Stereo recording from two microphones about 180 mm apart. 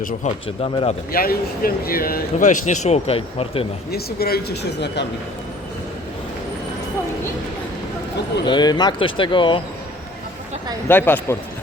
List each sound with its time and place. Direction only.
0.4 s speech: 30° left (ahead or behind)
1.1 s speech: 55° left (ahead or behind); by 3.7 s 30° left (ahead or behind)
3.9 s speech: 60° left (ahead or behind)
8.4 s speech: 25° left (ahead or behind)
10.8 s speech: 10° left (ahead or behind)